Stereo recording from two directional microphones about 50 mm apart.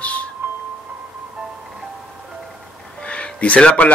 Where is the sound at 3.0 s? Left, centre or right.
Left.